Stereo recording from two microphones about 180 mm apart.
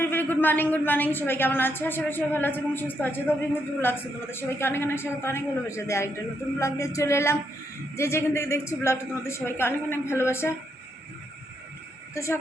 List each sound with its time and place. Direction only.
0.0 s a woman's voice: 10° left (ahead or behind)
12.1 s a woman's voice: 15° left (ahead or behind)